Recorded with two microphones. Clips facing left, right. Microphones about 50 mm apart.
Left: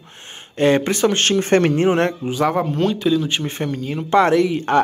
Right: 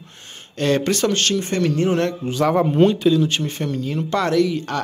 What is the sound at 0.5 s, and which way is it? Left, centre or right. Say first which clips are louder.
Speech: left 3 dB; left.